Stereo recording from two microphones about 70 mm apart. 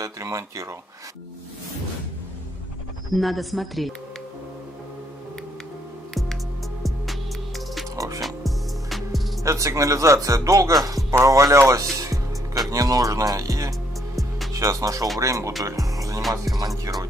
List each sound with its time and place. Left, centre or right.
0.0 s speech: right
3.1 s speech: centre
6.8 s music: centre
7.9 s music: right
8.2 s music: centre
9.4 s speech: right
11.1 s speech: right
12.7 s speech: right
14.5 s music: right
15.1 s speech: right
15.6 s music: right
16.2 s speech: centre
16.5 s speech: right